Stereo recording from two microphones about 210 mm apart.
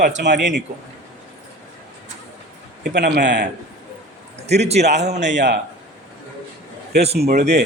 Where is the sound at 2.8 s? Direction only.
50° right (ahead or behind).